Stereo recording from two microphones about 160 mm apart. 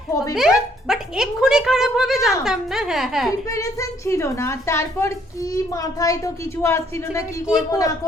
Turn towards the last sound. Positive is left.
turn(degrees=20)  # may be behind; listen again after turning